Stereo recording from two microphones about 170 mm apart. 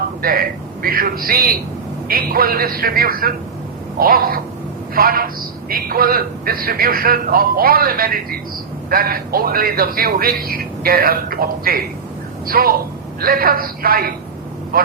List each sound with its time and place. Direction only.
0.2 s a man's voice: 60° right (ahead or behind)